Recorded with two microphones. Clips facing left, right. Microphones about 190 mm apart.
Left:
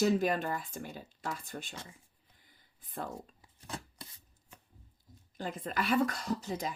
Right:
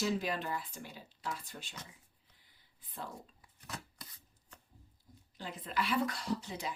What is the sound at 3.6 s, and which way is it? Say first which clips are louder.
Chopping: left 4 dB; 25° left (ahead or behind).